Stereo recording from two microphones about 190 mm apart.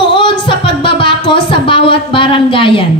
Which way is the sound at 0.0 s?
25° left (ahead or behind).